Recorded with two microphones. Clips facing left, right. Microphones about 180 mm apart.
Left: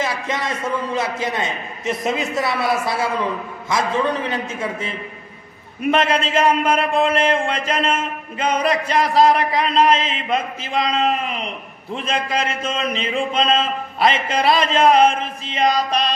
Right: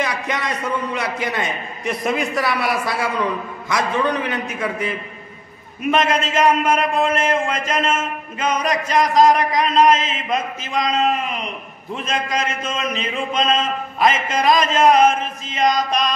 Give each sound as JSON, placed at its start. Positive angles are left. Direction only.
{"t": 0.0, "sound": "a man's voice", "side_deg": 25}